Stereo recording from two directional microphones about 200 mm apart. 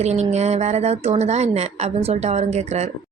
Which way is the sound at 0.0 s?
35° right (ahead or behind).